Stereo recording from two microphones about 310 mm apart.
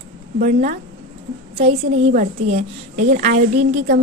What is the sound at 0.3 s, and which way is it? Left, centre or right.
A woman's voice, right.